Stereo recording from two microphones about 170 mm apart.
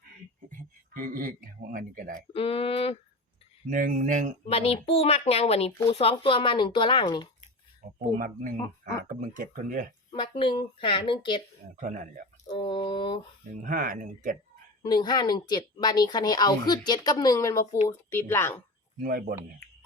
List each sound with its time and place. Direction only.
0.5 s speech: 55° right (ahead or behind)
2.3 s speech: 35° left (ahead or behind)
3.7 s speech: 50° right (ahead or behind)
4.4 s speech: 35° left (ahead or behind)
7.8 s speech: 50° right (ahead or behind)
10.1 s speech: 25° left (ahead or behind)
11.8 s speech: 50° right (ahead or behind)
12.5 s speech: 30° left (ahead or behind)
13.5 s speech: 55° right (ahead or behind)
14.8 s speech: 25° left (ahead or behind)
19.0 s speech: 50° right (ahead or behind)